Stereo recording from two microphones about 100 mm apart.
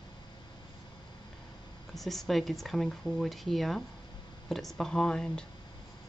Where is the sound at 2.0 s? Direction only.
Centre (ahead or behind).